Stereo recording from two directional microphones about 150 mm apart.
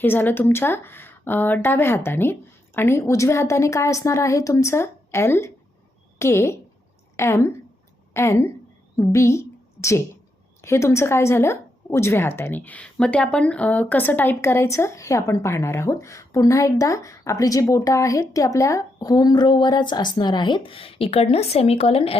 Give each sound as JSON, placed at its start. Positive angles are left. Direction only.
{"t": 0.0, "sound": "a woman's voice", "side_deg": 15}